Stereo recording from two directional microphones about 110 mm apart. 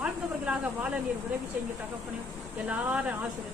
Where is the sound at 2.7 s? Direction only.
10° right (ahead or behind).